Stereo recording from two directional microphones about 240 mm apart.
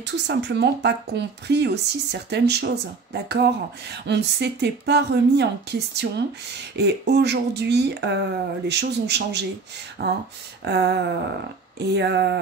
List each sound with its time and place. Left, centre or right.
0.0 s speech: right